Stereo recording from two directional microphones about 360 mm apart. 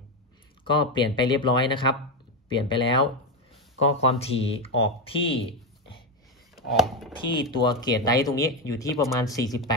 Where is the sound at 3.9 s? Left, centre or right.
Centre.